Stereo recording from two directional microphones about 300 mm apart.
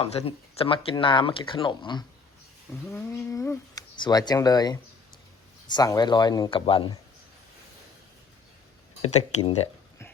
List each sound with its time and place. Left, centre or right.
0.0 s speech: centre
9.0 s speech: left